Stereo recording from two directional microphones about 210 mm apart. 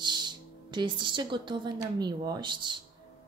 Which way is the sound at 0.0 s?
20° right (ahead or behind).